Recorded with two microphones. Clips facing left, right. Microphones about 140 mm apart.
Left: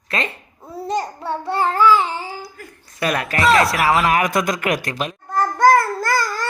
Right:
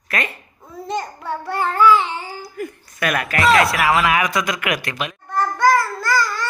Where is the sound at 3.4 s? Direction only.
Centre (ahead or behind).